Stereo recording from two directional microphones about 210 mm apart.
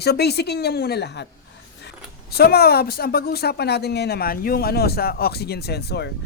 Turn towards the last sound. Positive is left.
turn(degrees=50)  # may be behind; listen again after turning